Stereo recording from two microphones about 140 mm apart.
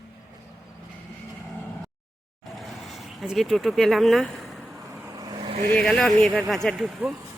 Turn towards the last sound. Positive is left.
turn(degrees=0)  # may be behind; listen again after turning